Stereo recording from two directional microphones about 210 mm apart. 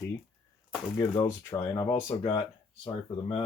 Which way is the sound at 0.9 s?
15° left (ahead or behind).